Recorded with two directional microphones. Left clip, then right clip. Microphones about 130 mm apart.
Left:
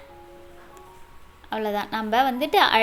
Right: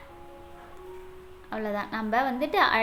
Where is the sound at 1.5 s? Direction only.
15° left (ahead or behind).